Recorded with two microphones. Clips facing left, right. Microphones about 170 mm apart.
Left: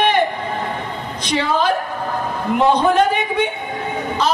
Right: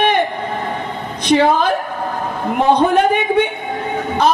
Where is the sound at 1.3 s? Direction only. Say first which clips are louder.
Right 8 dB; 55° right (ahead or behind).